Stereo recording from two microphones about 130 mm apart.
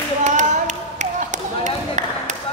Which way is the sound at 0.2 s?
65° right (ahead or behind).